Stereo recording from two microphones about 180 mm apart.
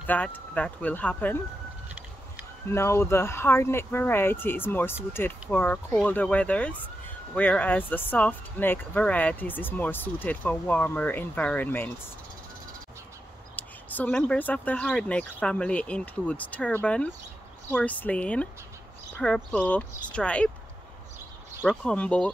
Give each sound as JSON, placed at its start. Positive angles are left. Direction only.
{"t": 0.0, "sound": "speech", "side_deg": 10}
{"t": 2.7, "sound": "speech", "side_deg": 15}
{"t": 13.6, "sound": "speech", "side_deg": 10}
{"t": 21.6, "sound": "speech", "side_deg": 5}